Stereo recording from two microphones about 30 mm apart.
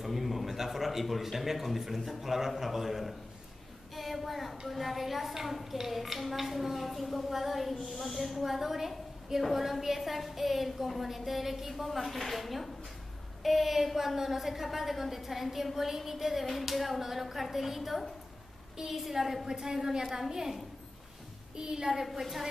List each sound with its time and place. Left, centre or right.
0.0 s speech: centre
3.9 s a sound: centre
4.6 s a woman's voice: centre
19.4 s a woman's voice: centre
21.5 s a woman's voice: right